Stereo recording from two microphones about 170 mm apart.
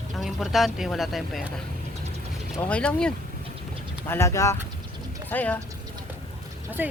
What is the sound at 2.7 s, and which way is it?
Speech, 5° left (ahead or behind).